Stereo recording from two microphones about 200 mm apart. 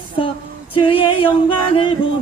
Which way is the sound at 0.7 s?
25° left (ahead or behind).